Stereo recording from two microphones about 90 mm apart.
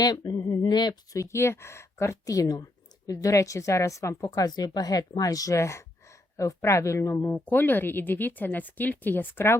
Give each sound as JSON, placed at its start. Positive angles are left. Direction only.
{"t": 0.0, "sound": "speech", "side_deg": 45}
{"t": 1.1, "sound": "a woman's voice", "side_deg": 35}
{"t": 7.2, "sound": "speech", "side_deg": 20}